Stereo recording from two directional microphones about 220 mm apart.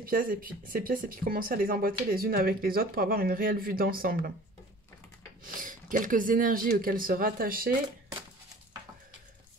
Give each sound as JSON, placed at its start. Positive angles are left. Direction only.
{"t": 0.0, "sound": "speech", "side_deg": -40}
{"t": 5.5, "sound": "speech", "side_deg": -40}